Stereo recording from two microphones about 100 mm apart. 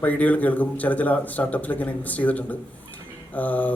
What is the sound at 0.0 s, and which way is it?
A man's voice, 15° left (ahead or behind).